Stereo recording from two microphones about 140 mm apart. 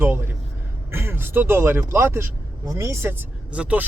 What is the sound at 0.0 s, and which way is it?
Speech, 15° right (ahead or behind).